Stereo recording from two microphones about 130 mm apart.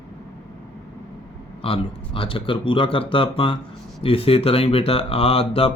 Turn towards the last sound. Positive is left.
turn(degrees=45)  # may be behind; listen again after turning